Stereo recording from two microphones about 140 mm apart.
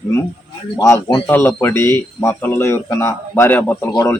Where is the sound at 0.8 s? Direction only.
20° left (ahead or behind).